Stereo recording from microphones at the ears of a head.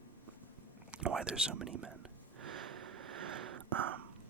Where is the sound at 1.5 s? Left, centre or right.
Right.